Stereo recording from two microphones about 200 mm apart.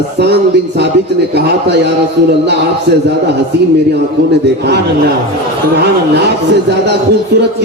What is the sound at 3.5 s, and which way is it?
A man's voice, 60° right (ahead or behind).